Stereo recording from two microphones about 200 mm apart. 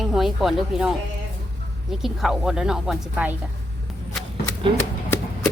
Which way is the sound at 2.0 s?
Centre (ahead or behind).